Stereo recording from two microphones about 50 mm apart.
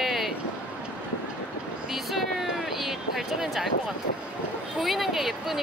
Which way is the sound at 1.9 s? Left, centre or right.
Centre.